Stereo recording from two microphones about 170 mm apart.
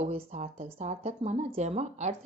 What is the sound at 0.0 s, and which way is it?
Speech, 40° right (ahead or behind).